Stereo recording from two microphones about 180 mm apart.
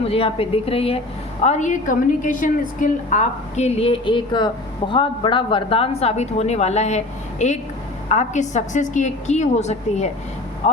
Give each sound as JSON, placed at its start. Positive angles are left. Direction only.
{"t": 0.0, "sound": "a woman's voice", "side_deg": 30}